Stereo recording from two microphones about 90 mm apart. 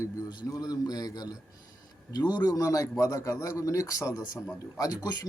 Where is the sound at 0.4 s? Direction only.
45° left (ahead or behind).